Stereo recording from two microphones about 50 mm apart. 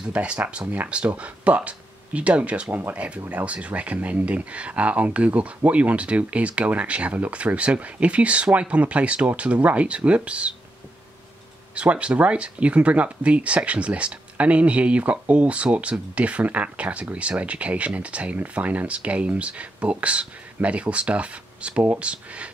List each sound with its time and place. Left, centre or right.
0.1 s speech: right
11.7 s speech: right